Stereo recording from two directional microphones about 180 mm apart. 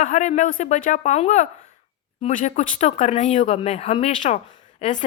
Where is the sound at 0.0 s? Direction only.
40° left (ahead or behind).